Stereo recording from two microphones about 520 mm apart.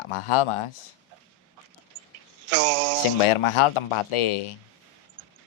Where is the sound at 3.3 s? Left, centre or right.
Left.